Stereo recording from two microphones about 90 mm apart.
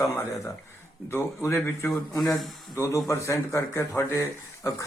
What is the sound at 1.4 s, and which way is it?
Speech, 30° left (ahead or behind).